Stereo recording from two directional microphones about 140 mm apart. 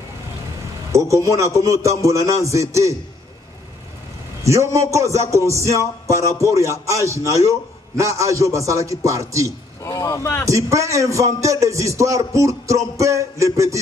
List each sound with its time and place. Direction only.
0.9 s a man's voice: 20° right (ahead or behind)
4.4 s a man's voice: 20° right (ahead or behind)
9.8 s speech: 20° left (ahead or behind)
10.5 s a man's voice: 20° right (ahead or behind)